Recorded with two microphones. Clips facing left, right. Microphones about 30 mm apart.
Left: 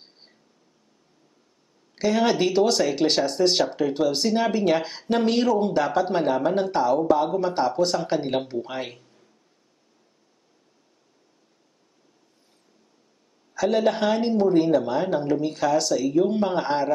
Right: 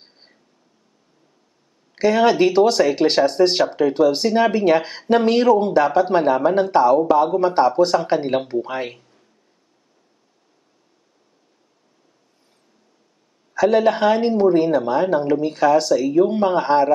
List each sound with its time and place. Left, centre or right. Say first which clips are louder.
0.0 s a sound: right 2 dB; centre
2.0 s speech: right 6 dB; centre
13.6 s speech: right 6 dB; centre